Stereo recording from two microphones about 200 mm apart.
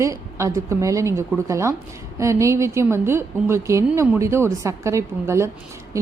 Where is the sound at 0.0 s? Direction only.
15° right (ahead or behind).